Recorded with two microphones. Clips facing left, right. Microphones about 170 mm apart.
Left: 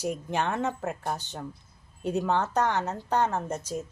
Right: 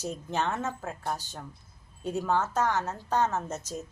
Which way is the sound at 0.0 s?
15° left (ahead or behind).